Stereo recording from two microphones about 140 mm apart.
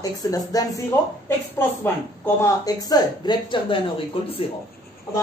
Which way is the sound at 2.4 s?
25° left (ahead or behind).